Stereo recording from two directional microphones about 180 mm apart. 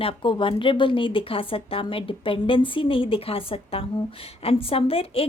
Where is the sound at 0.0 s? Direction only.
30° left (ahead or behind).